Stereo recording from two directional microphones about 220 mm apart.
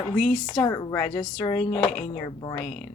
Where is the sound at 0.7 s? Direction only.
20° left (ahead or behind).